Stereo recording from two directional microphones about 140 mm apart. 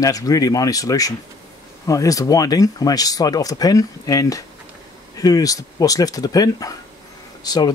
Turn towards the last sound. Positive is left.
turn(degrees=30)  # may be behind; listen again after turning